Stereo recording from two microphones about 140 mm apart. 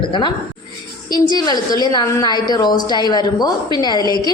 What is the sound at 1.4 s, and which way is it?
A woman's voice, 30° left (ahead or behind).